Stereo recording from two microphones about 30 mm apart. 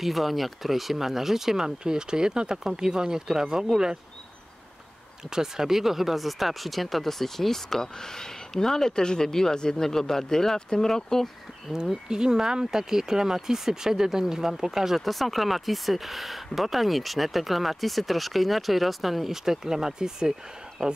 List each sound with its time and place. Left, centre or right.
0.0 s speech: centre
1.9 s speech: right
5.3 s speech: centre
12.1 s speech: right
15.0 s speech: centre